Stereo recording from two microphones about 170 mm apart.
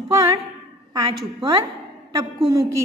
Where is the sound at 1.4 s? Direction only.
30° right (ahead or behind).